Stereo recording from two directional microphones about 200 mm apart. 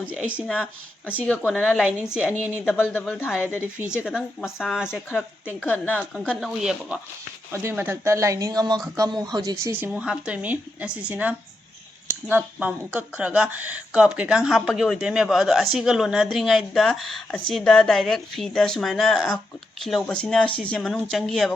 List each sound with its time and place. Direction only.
0.1 s speech: 5° right (ahead or behind)
1.3 s speech: 5° left (ahead or behind)
2.6 s speech: 10° left (ahead or behind)
3.2 s a woman's voice: 5° right (ahead or behind)
9.9 s speech: 5° right (ahead or behind)